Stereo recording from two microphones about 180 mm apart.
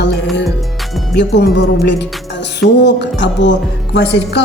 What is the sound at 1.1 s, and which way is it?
A woman's voice, 70° left (ahead or behind).